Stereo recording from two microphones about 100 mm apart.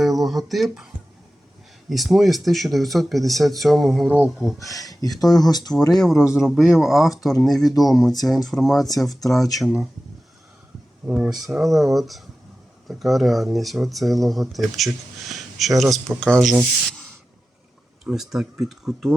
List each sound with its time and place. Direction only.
0.0 s speech: centre (ahead or behind)
1.9 s speech: centre (ahead or behind)
4.9 s speech: 40° left (ahead or behind)
5.1 s speech: centre (ahead or behind)
11.0 s speech: 10° right (ahead or behind)
18.0 s speech: 5° right (ahead or behind)